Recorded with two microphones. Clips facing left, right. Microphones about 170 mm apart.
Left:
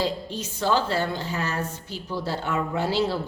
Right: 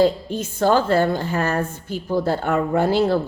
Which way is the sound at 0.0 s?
50° right (ahead or behind).